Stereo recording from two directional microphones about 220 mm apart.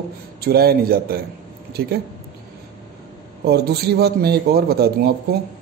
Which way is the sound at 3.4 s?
45° right (ahead or behind).